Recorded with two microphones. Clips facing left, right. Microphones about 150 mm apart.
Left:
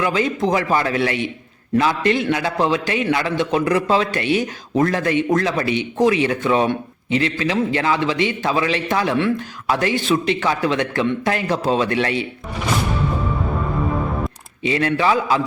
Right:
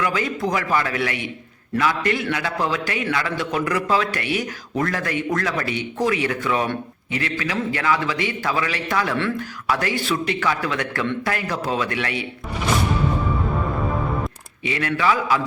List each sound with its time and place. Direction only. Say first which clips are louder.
0.0 s a man's voice: left 4 dB; 25° left (ahead or behind)
14.6 s a man's voice: left 4 dB; 30° left (ahead or behind)